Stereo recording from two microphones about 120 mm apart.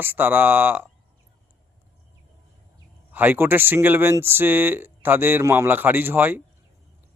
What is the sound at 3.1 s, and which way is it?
Speech, 15° right (ahead or behind).